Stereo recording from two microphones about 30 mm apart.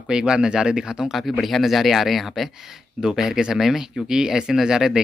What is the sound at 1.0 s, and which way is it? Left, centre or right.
Speech, centre.